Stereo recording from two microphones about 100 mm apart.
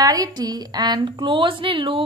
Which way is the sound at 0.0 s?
40° right (ahead or behind).